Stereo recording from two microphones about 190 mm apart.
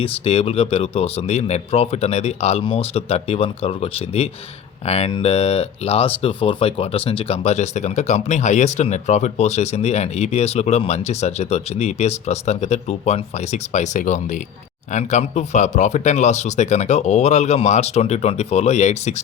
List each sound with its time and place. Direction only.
0.0 s speech: 30° left (ahead or behind)